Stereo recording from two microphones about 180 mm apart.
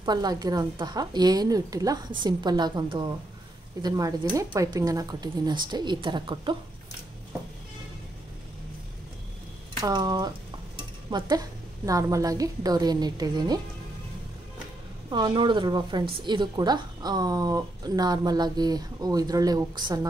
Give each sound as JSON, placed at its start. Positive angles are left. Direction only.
{"t": 0.0, "sound": "a woman's voice", "side_deg": -25}
{"t": 9.8, "sound": "a woman's voice", "side_deg": -20}
{"t": 15.0, "sound": "a woman's voice", "side_deg": -25}